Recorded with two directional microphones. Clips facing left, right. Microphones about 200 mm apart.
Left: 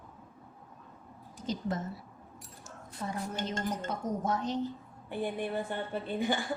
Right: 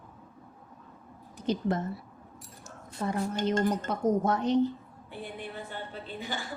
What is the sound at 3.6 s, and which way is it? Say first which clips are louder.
Speech: right 7 dB; 65° right (ahead or behind).